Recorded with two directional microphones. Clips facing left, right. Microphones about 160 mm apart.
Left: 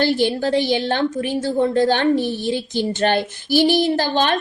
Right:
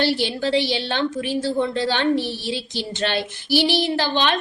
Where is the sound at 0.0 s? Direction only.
45° left (ahead or behind).